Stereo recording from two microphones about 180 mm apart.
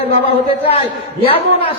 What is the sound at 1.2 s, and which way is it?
Speech, 30° left (ahead or behind).